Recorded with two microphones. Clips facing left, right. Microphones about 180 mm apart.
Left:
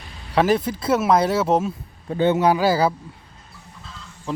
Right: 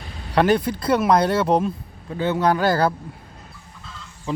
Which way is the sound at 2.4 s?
10° left (ahead or behind).